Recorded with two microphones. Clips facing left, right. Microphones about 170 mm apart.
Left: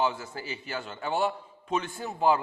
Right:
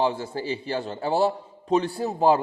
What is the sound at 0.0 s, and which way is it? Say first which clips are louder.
A man's voice: right 5 dB; 30° right (ahead or behind).